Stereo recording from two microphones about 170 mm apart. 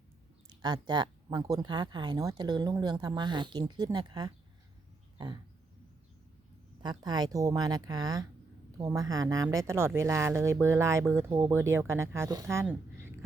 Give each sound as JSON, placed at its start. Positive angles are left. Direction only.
{"t": 0.6, "sound": "speech", "side_deg": -25}
{"t": 5.1, "sound": "a sound", "side_deg": -25}
{"t": 6.8, "sound": "speech", "side_deg": -25}